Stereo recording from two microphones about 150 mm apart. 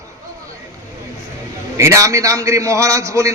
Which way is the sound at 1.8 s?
20° right (ahead or behind).